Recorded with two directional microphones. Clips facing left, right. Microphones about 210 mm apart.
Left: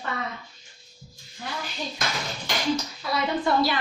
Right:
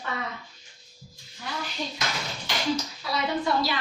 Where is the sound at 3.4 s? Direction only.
55° left (ahead or behind).